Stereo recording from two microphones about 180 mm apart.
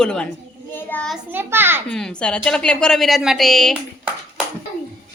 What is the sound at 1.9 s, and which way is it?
A child's voice, 5° left (ahead or behind).